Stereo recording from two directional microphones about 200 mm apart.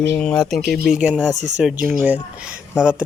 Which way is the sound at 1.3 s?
35° right (ahead or behind).